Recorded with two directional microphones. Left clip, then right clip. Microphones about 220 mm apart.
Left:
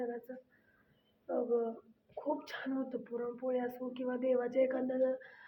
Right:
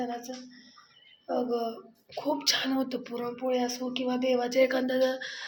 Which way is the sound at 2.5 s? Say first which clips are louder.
Right 9 dB; 25° right (ahead or behind).